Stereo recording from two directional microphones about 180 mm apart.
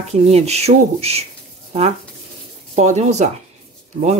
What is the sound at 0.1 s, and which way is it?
Speech, 35° right (ahead or behind).